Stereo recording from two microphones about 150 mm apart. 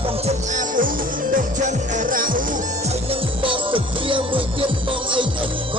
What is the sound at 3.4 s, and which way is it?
Music, 35° right (ahead or behind).